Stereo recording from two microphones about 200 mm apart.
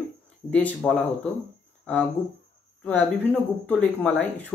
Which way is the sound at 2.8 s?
10° left (ahead or behind).